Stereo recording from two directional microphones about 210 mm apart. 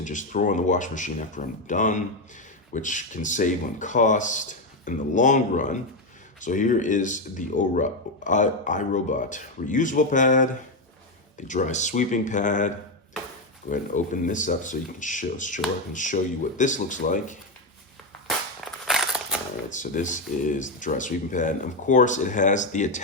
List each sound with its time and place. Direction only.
0.0 s speech: 35° left (ahead or behind)
18.3 s crushing: centre (ahead or behind)
19.7 s speech: 35° left (ahead or behind)